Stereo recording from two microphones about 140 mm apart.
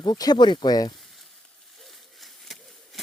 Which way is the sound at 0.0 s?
30° left (ahead or behind).